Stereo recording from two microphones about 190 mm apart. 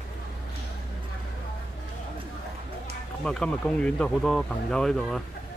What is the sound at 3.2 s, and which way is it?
Speech, 5° left (ahead or behind).